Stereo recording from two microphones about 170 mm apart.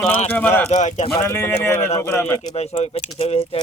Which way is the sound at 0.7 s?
45° left (ahead or behind).